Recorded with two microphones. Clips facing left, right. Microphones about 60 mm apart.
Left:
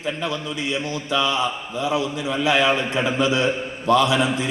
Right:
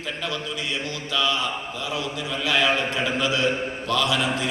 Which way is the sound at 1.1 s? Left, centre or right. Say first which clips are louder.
Left 3 dB; left.